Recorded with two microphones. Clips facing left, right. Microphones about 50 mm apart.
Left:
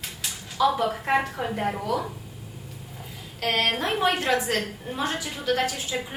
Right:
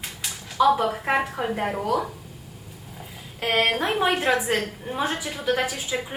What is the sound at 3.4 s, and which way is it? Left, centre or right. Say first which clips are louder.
A woman's voice: right 2 dB; centre.